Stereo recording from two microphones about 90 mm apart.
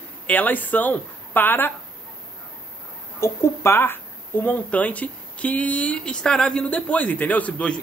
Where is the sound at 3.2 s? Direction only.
30° left (ahead or behind); by 7.8 s 15° left (ahead or behind).